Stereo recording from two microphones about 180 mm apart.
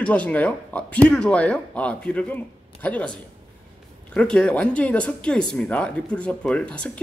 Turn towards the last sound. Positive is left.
turn(degrees=5)  # may be behind; listen again after turning